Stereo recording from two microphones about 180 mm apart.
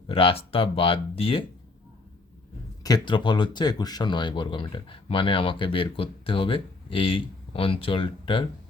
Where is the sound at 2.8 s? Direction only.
25° left (ahead or behind).